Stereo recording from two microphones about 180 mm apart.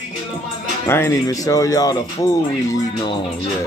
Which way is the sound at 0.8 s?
15° left (ahead or behind).